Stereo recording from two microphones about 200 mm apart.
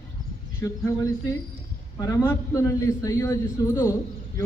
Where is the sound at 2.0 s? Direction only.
20° left (ahead or behind).